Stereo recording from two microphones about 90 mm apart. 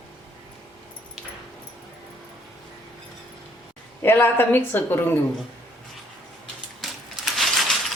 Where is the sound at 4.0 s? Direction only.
25° left (ahead or behind).